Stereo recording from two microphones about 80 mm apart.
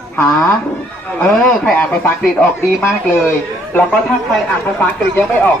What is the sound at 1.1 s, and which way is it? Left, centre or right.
Speech, centre.